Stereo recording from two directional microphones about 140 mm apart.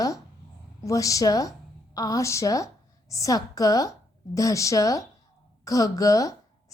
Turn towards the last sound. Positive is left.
turn(degrees=25)  # may be behind; listen again after turning